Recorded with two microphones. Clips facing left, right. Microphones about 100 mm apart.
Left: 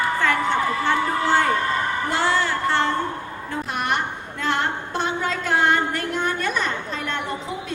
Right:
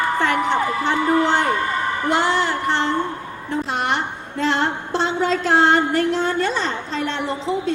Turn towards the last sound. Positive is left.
turn(degrees=-25)  # may be behind; listen again after turning